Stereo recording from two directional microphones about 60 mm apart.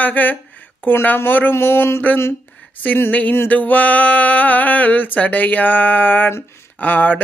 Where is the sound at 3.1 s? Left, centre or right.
Left.